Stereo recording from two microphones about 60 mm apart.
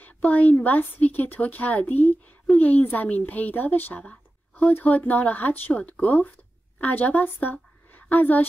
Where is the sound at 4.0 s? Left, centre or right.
Centre.